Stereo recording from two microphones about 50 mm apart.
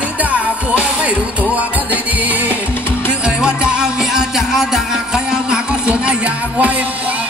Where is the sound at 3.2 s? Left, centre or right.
Centre.